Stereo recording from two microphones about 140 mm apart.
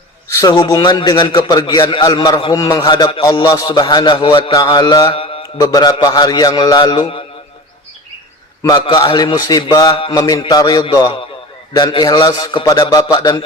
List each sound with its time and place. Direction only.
0.3 s a man's voice: 30° left (ahead or behind)
5.5 s a man's voice: 25° left (ahead or behind)
8.6 s a man's voice: 30° left (ahead or behind)